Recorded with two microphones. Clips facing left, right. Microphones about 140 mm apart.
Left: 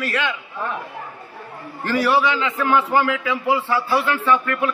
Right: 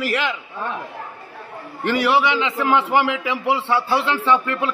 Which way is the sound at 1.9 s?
20° right (ahead or behind).